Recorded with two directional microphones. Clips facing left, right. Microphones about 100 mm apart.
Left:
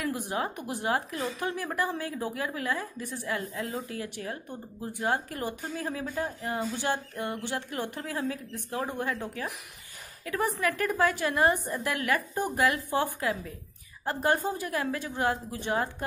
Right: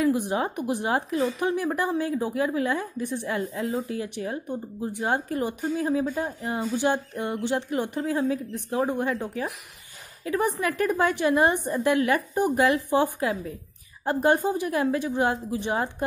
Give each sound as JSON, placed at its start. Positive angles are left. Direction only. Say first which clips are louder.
{"t": 0.0, "sound": "a woman's voice", "louder": "right 7 dB", "side_deg": -20}
{"t": 13.3, "sound": "a woman's voice", "louder": "right 3 dB", "side_deg": -35}
{"t": 14.0, "sound": "a woman's voice", "louder": "right 5 dB", "side_deg": -20}